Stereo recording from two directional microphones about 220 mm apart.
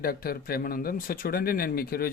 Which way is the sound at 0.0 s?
40° left (ahead or behind).